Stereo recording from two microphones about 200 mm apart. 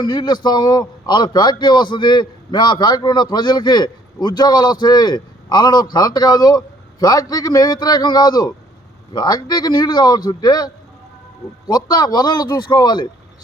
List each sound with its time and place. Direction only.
0.0 s a man's voice: 20° left (ahead or behind)
11.7 s a man's voice: 20° left (ahead or behind)